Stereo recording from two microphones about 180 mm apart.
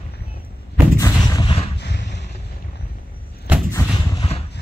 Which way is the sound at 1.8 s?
70° left (ahead or behind).